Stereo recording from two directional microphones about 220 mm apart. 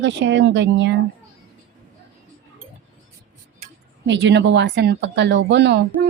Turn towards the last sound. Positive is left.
turn(degrees=-55)  # may be behind; listen again after turning